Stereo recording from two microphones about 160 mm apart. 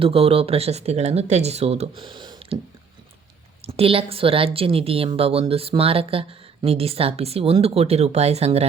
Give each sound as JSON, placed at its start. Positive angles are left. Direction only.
{"t": 0.0, "sound": "a woman's voice", "side_deg": -35}
{"t": 3.7, "sound": "a woman's voice", "side_deg": -35}